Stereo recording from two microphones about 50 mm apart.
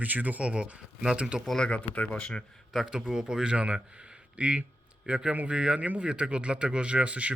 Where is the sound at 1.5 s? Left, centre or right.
Centre.